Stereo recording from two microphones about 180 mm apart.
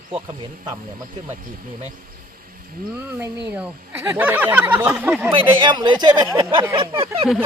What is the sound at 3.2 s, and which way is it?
Speech, 10° right (ahead or behind).